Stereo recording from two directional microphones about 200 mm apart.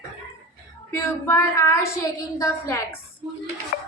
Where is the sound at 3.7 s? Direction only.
45° left (ahead or behind).